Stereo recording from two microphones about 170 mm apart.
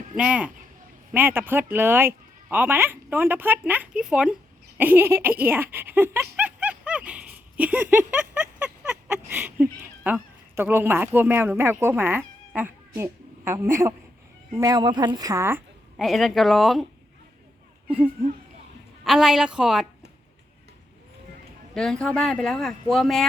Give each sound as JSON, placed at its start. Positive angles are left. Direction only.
{"t": 0.2, "sound": "a woman's voice", "side_deg": -5}
{"t": 16.0, "sound": "speech", "side_deg": 0}
{"t": 17.8, "sound": "speech", "side_deg": -5}
{"t": 21.8, "sound": "speech", "side_deg": 5}